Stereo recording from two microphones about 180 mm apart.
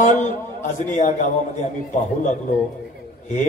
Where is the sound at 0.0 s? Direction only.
45° left (ahead or behind).